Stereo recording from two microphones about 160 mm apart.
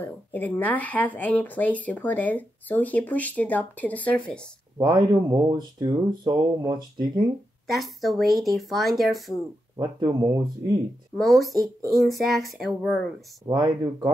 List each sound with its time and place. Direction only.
0.0 s speech: 10° left (ahead or behind)
4.7 s speech: 25° right (ahead or behind)
7.7 s speech: centre (ahead or behind)
9.8 s speech: 20° right (ahead or behind)
11.1 s speech: centre (ahead or behind)
13.5 s speech: 25° right (ahead or behind)